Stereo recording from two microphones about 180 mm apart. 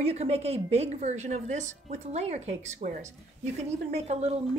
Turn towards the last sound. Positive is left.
turn(degrees=-35)  # may be behind; listen again after turning